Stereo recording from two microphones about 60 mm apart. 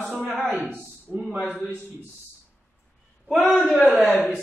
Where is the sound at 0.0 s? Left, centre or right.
Centre.